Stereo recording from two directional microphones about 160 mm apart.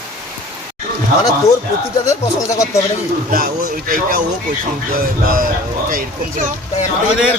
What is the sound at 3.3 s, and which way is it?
Speech, 65° right (ahead or behind).